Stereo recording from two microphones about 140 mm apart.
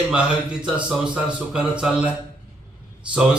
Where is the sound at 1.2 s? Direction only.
5° right (ahead or behind).